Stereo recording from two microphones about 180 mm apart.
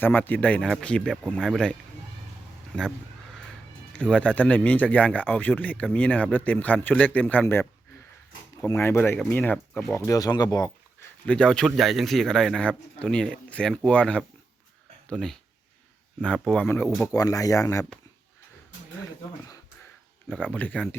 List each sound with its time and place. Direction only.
0.0 s speech: 10° left (ahead or behind)
3.9 s speech: 5° left (ahead or behind)
8.7 s speech: 10° left (ahead or behind)
11.3 s speech: 5° left (ahead or behind)
16.5 s speech: 10° left (ahead or behind)
20.3 s speech: centre (ahead or behind)
20.6 s speech: 10° left (ahead or behind)